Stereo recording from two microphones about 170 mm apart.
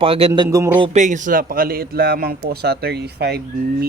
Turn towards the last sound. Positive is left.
turn(degrees=-70)  # may be behind; listen again after turning